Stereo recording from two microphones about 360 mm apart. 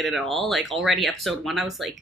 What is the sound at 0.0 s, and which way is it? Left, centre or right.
A woman's voice, centre.